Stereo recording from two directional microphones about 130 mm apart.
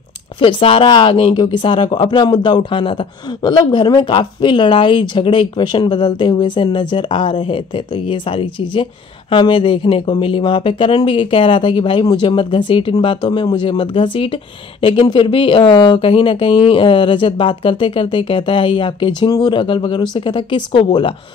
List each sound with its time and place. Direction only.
0.4 s speech: 45° left (ahead or behind)